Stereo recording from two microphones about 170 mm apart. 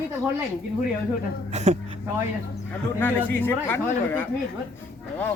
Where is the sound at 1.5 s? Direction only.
40° right (ahead or behind).